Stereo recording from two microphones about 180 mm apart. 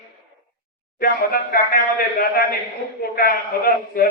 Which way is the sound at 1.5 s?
55° left (ahead or behind).